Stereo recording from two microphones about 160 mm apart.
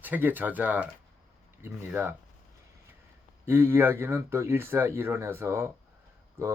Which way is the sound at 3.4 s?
15° right (ahead or behind).